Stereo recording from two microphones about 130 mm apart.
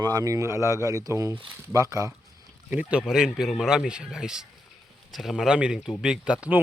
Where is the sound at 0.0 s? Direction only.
30° right (ahead or behind).